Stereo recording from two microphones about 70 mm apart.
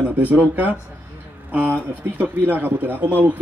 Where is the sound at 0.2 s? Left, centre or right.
Right.